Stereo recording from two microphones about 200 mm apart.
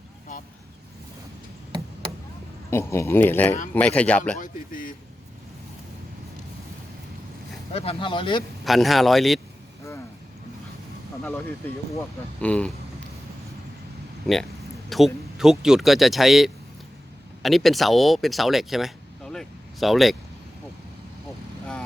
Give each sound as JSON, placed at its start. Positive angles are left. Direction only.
{"t": 2.6, "sound": "speech", "side_deg": 15}
{"t": 4.4, "sound": "a man's voice", "side_deg": 45}
{"t": 7.7, "sound": "speech", "side_deg": 30}
{"t": 8.6, "sound": "speech", "side_deg": 0}
{"t": 11.9, "sound": "speech", "side_deg": 5}
{"t": 14.8, "sound": "speech", "side_deg": 0}